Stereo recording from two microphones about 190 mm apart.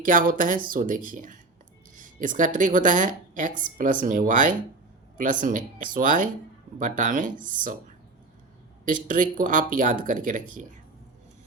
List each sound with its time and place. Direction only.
0.0 s a woman's voice: 45° right (ahead or behind)
9.0 s a woman's voice: 45° right (ahead or behind)